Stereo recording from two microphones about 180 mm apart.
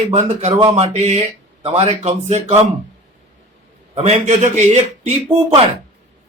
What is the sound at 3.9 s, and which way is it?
A man's voice, 35° right (ahead or behind).